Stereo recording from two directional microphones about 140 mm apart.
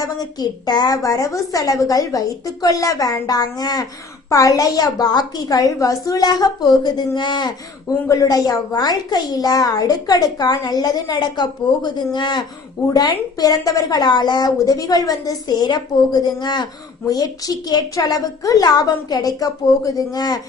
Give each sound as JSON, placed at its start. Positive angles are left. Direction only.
{"t": 0.0, "sound": "a woman's voice", "side_deg": 30}